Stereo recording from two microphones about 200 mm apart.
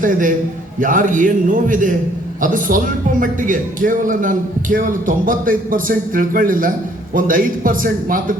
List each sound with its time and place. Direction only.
0.0 s a man's voice: 40° right (ahead or behind)